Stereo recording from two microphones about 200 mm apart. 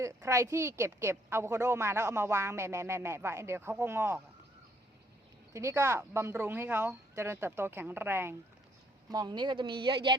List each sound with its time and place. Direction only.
0.0 s speech: 15° right (ahead or behind)
5.5 s speech: 15° right (ahead or behind)